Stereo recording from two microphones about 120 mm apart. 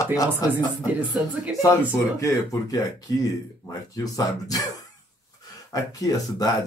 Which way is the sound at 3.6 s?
30° left (ahead or behind).